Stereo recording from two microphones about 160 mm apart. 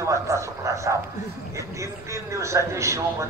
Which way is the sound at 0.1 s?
20° right (ahead or behind).